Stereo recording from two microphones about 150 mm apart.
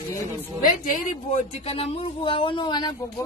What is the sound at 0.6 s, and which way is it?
Speech, 65° left (ahead or behind).